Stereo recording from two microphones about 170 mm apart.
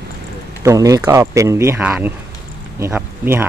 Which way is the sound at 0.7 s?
20° right (ahead or behind).